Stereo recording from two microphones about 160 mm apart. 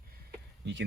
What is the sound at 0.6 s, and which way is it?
Speech, 90° right.